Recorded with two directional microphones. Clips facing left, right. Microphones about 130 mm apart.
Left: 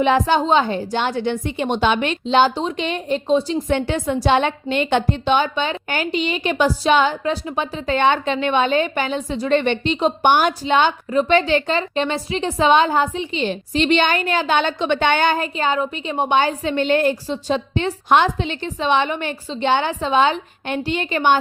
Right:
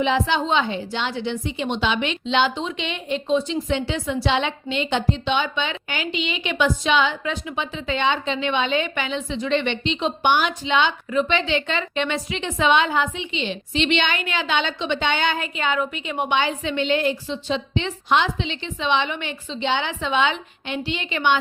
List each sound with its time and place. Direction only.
0.0 s a woman's voice: 50° left (ahead or behind)
3.7 s a woman's voice: 50° left (ahead or behind)